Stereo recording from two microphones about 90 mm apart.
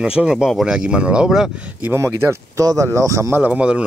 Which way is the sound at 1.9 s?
30° right (ahead or behind).